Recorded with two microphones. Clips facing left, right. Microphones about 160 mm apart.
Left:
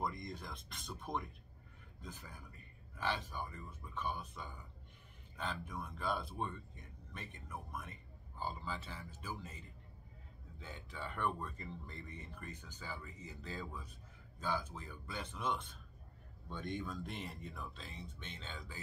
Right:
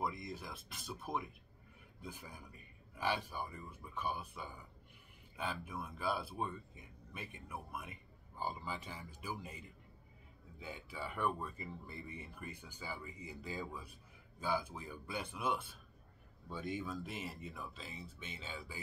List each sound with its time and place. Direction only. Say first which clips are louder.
0.0 s speech: right 1 dB; 5° right (ahead or behind)